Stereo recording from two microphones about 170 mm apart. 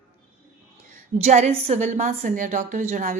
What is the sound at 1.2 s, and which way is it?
A woman's voice, 40° right (ahead or behind).